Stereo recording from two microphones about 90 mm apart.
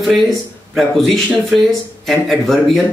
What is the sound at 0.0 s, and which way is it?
Speech, centre (ahead or behind).